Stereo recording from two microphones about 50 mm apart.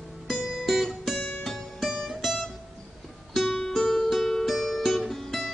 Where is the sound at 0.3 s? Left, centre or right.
Centre.